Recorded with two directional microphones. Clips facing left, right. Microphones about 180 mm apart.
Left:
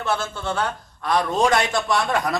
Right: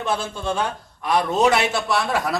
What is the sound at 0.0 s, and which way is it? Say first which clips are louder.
A man's voice: right 1 dB; 15° right (ahead or behind).